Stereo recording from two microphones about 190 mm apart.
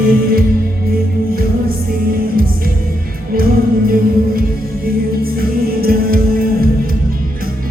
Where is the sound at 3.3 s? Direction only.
50° right (ahead or behind).